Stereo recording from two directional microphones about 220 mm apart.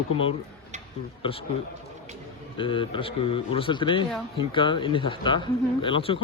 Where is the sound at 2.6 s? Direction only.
20° left (ahead or behind).